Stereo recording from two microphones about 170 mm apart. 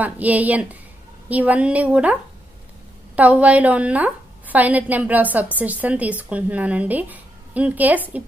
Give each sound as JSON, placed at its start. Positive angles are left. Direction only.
{"t": 0.0, "sound": "a woman's voice", "side_deg": -10}
{"t": 3.2, "sound": "a woman's voice", "side_deg": -10}